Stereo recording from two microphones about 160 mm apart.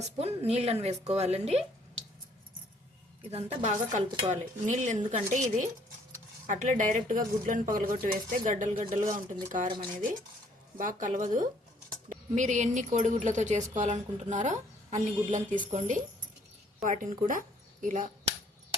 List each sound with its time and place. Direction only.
0.2 s a woman's voice: 40° right (ahead or behind)
3.3 s a woman's voice: 50° right (ahead or behind)
10.8 s a woman's voice: 55° right (ahead or behind)